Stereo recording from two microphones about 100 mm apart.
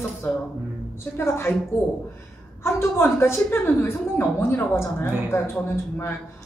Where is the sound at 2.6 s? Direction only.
25° left (ahead or behind).